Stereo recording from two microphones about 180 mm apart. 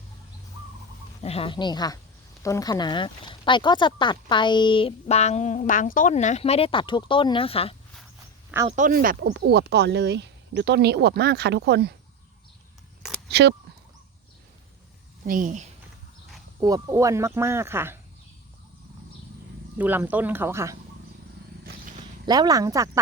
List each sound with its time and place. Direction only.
1.2 s speech: 35° left (ahead or behind)
8.7 s speech: 45° right (ahead or behind)
9.2 s speech: 75° right (ahead or behind)
13.3 s speech: 65° right (ahead or behind)
15.3 s speech: 45° right (ahead or behind)
16.6 s speech: 20° right (ahead or behind)
19.8 s speech: 10° right (ahead or behind)
22.3 s speech: 20° right (ahead or behind)